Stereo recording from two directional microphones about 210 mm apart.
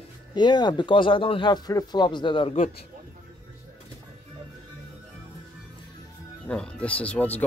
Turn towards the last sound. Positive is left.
turn(degrees=5)  # may be behind; listen again after turning